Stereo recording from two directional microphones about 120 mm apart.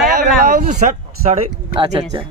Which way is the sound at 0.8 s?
90° right.